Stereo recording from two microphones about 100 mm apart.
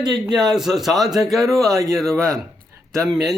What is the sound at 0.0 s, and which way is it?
Speech, 45° right (ahead or behind).